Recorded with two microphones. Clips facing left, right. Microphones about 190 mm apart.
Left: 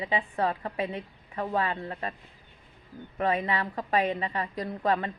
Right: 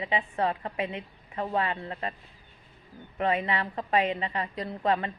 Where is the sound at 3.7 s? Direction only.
25° right (ahead or behind).